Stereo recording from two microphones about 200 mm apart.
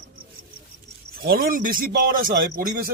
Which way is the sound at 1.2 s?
50° right (ahead or behind).